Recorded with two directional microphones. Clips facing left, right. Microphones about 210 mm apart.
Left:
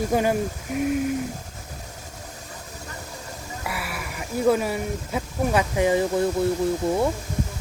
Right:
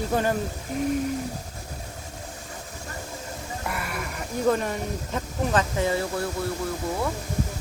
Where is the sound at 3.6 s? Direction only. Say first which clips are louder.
Even; 5° left (ahead or behind); by 7.0 s 30° left (ahead or behind).